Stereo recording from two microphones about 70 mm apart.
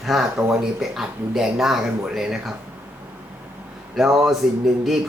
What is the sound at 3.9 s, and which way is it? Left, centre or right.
Speech, centre.